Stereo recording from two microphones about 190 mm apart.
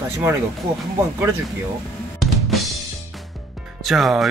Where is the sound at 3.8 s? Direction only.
Centre (ahead or behind).